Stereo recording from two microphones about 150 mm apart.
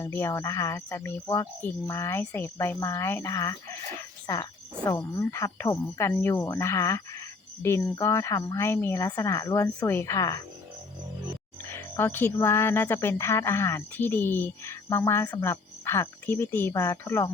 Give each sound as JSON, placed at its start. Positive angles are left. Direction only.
{"t": 0.0, "sound": "speech", "side_deg": 15}
{"t": 11.7, "sound": "speech", "side_deg": 15}